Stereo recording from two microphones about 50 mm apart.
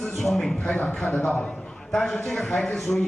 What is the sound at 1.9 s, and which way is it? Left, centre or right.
A man's voice, centre.